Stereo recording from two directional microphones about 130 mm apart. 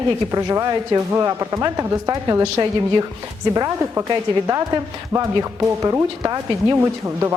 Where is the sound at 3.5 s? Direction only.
25° right (ahead or behind).